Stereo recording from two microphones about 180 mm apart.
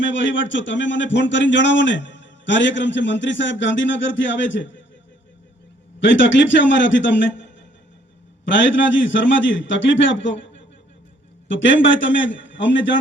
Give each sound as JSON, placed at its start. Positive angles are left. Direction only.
{"t": 0.0, "sound": "a man's voice", "side_deg": 90}
{"t": 6.0, "sound": "a man's voice", "side_deg": 90}